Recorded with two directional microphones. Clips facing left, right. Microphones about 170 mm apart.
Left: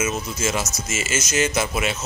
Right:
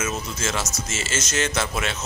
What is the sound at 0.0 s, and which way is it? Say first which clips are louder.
Speech: left 3 dB; 10° left (ahead or behind).